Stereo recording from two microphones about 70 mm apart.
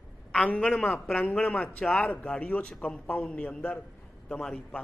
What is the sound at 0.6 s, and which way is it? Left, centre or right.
Speech, centre.